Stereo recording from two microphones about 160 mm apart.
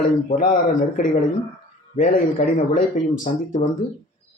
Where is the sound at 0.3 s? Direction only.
60° left (ahead or behind).